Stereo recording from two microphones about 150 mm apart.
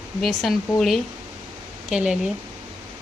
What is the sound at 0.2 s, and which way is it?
A woman's voice, centre (ahead or behind).